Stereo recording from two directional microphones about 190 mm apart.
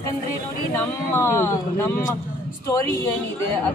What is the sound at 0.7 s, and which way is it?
Speech, 15° left (ahead or behind).